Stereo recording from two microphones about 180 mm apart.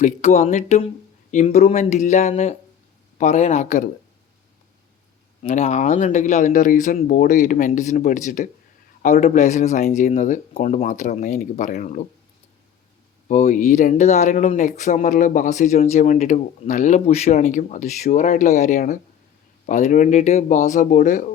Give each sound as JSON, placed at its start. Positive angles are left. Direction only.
{"t": 0.0, "sound": "speech", "side_deg": 40}
{"t": 5.4, "sound": "speech", "side_deg": 40}
{"t": 13.2, "sound": "speech", "side_deg": 40}